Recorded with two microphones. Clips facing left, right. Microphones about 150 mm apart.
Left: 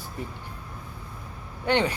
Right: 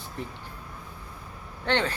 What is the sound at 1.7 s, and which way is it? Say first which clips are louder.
Speech: left 3 dB; 15° left (ahead or behind).